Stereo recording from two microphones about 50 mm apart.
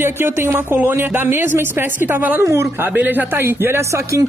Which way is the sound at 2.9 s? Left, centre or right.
Right.